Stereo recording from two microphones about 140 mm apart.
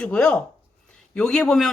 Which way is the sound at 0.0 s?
10° left (ahead or behind).